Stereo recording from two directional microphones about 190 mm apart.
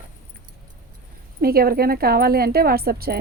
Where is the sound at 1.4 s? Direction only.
50° right (ahead or behind).